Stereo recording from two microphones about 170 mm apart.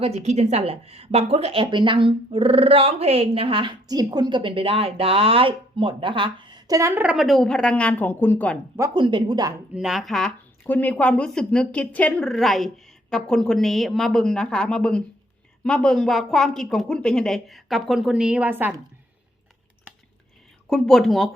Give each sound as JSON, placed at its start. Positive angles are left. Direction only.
{"t": 0.0, "sound": "a woman's voice", "side_deg": -40}
{"t": 9.0, "sound": "a woman's voice", "side_deg": -30}
{"t": 9.7, "sound": "speech", "side_deg": 0}
{"t": 20.7, "sound": "speech", "side_deg": 5}